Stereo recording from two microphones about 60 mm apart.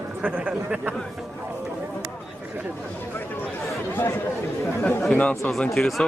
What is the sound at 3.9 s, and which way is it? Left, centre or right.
Speech, left.